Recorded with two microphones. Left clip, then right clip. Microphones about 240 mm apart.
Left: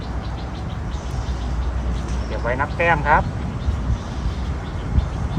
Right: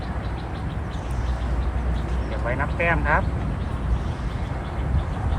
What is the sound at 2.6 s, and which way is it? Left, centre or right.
Speech, left.